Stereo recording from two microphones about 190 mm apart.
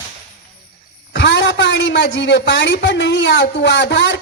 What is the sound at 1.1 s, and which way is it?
A woman's voice, 65° left (ahead or behind).